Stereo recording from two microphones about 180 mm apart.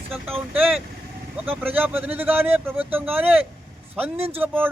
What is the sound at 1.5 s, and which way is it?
Speech, 10° right (ahead or behind).